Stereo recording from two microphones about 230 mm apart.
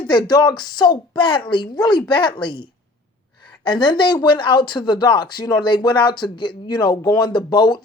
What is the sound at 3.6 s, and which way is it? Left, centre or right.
Speech, left.